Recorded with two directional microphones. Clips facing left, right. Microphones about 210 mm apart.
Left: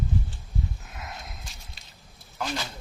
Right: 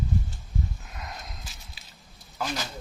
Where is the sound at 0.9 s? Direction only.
Centre (ahead or behind).